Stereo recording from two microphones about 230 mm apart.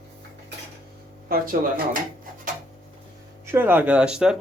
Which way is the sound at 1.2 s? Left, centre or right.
Right.